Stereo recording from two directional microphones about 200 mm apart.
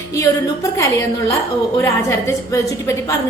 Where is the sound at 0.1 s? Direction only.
15° left (ahead or behind).